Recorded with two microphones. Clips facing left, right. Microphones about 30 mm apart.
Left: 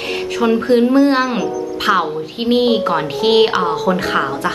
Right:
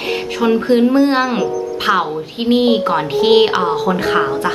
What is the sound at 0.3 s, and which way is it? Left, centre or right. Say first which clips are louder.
Speech: even; centre.